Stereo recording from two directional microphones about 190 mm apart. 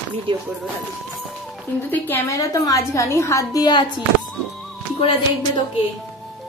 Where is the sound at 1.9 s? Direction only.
10° left (ahead or behind).